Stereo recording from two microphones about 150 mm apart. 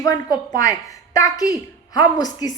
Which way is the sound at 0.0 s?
20° left (ahead or behind).